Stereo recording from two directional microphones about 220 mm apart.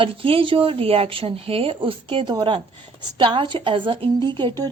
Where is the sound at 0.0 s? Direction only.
25° right (ahead or behind).